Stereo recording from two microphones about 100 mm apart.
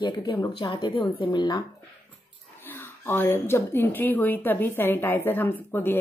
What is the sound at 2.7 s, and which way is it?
Speech, 20° left (ahead or behind).